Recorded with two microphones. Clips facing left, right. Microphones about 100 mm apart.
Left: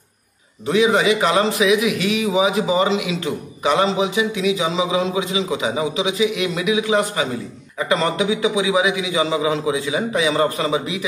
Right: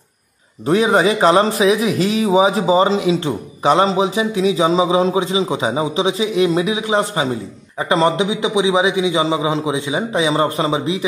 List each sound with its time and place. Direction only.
0.7 s a man's voice: 35° right (ahead or behind)